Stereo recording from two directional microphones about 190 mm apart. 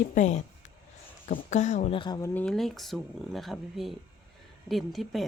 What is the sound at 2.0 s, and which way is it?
Speech, 20° left (ahead or behind).